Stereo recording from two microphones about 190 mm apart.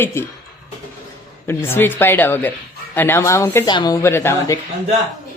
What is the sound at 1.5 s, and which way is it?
Speech, 10° left (ahead or behind).